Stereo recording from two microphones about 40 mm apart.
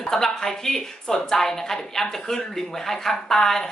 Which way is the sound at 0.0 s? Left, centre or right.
Centre.